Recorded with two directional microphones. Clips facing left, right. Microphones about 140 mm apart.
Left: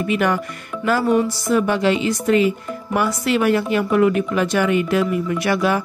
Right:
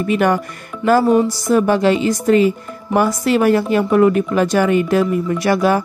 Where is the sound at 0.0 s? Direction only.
40° right (ahead or behind).